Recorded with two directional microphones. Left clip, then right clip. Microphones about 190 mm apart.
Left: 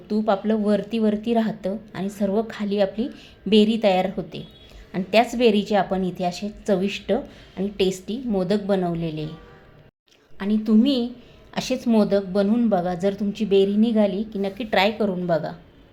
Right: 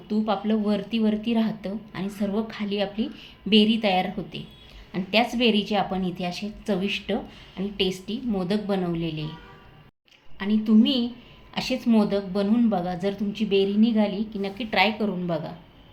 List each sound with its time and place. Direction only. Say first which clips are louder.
0.1 s a woman's voice: left 4 dB; 20° left (ahead or behind)
10.3 s a woman's voice: left 1 dB; 20° left (ahead or behind)